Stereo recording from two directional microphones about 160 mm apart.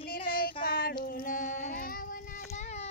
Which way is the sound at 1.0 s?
60° left (ahead or behind).